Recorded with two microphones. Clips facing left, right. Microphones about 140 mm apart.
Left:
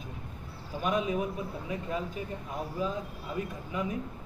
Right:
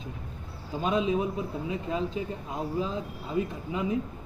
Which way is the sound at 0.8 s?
25° right (ahead or behind).